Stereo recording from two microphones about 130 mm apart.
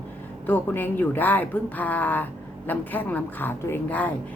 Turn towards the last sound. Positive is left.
turn(degrees=10)  # may be behind; listen again after turning